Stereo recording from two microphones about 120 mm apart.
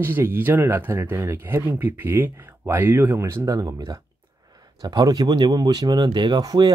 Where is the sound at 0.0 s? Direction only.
20° right (ahead or behind).